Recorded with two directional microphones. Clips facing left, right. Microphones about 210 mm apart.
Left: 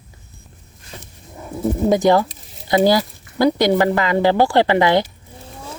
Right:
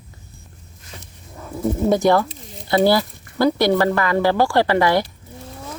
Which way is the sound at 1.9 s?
20° left (ahead or behind).